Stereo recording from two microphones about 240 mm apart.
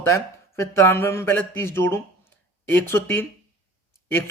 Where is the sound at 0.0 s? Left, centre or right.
Centre.